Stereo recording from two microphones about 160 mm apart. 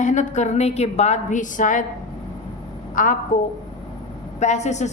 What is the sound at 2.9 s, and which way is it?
Speech, 55° left (ahead or behind).